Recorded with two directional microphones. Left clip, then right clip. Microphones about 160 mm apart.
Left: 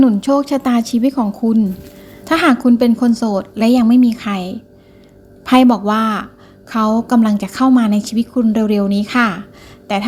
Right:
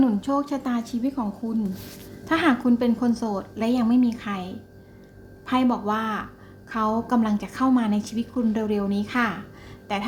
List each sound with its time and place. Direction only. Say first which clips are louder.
0.0 s a woman's voice: left 10 dB; 35° left (ahead or behind)